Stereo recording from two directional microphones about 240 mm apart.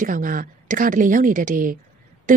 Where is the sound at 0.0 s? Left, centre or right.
Right.